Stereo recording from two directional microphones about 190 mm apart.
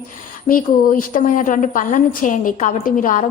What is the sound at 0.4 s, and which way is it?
A woman's voice, 45° left (ahead or behind).